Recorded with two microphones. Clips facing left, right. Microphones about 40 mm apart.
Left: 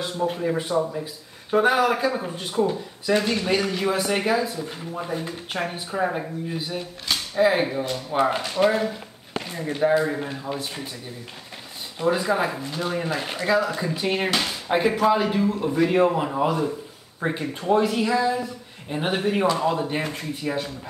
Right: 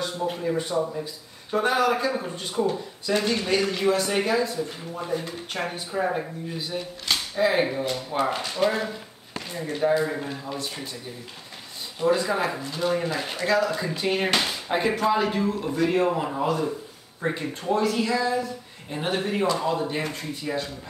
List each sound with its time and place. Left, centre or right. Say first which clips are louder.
0.3 s speech: left 1 dB; centre
8.1 s speech: left 6 dB; centre
12.0 s a man's voice: left 1 dB; centre
15.6 s speech: left 4 dB; centre